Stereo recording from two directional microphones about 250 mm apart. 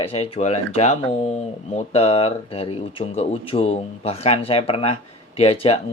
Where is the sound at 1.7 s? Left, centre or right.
Left.